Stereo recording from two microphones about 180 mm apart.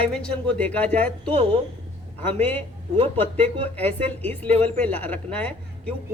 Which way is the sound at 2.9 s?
30° right (ahead or behind).